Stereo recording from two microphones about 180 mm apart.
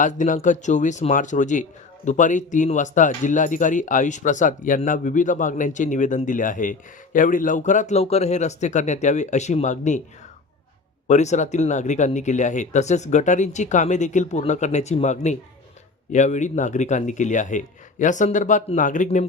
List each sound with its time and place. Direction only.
0.0 s speech: 45° left (ahead or behind)
11.1 s speech: 40° left (ahead or behind)